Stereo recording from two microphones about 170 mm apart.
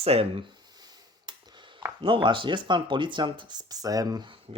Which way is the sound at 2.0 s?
30° right (ahead or behind).